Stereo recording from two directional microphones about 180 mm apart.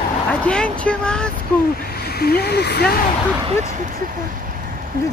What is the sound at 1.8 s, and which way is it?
Speech, 60° left (ahead or behind).